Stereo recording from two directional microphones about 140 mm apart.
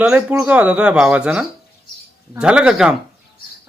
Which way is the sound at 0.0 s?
10° right (ahead or behind).